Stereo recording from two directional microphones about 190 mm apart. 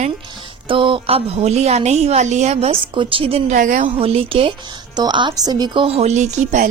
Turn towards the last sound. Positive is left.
turn(degrees=-40)  # may be behind; listen again after turning